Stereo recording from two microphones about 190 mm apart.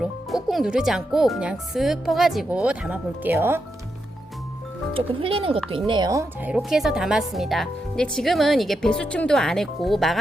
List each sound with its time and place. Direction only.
0.4 s speech: centre (ahead or behind)
4.9 s speech: 30° right (ahead or behind)
6.5 s speech: centre (ahead or behind)